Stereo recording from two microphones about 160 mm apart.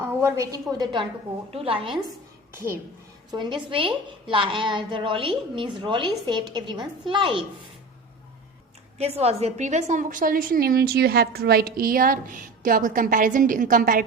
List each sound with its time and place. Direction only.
0.0 s a woman's voice: 15° right (ahead or behind)
1.5 s a woman's voice: 35° right (ahead or behind)
2.5 s a child's voice: 15° right (ahead or behind)
3.3 s a woman's voice: 30° right (ahead or behind)
9.0 s a woman's voice: 40° right (ahead or behind); by 14.0 s 60° right (ahead or behind)